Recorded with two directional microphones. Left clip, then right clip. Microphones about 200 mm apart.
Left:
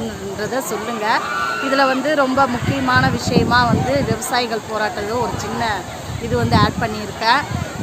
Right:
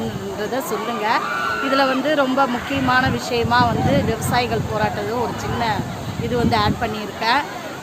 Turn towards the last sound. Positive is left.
turn(degrees=20)  # may be behind; listen again after turning